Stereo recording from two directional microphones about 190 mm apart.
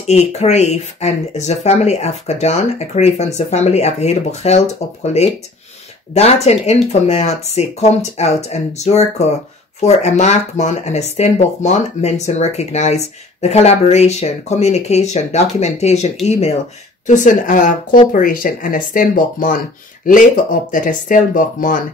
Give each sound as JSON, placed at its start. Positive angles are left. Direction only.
{"t": 0.0, "sound": "speech", "side_deg": 35}
{"t": 20.7, "sound": "speech", "side_deg": 45}